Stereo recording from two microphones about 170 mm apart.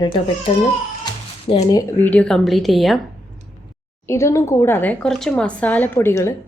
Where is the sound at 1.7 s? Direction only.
10° left (ahead or behind).